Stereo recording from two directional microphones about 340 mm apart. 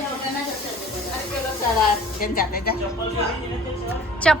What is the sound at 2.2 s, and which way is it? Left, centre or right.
Speech, left.